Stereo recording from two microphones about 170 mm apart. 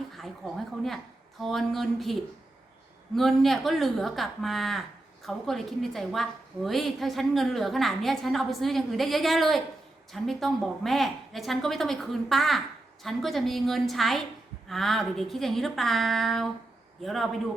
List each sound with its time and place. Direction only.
0.2 s a woman's voice: centre (ahead or behind)
3.2 s a woman's voice: centre (ahead or behind)